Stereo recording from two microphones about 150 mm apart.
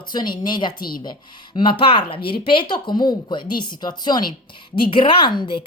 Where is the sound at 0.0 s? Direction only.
30° left (ahead or behind).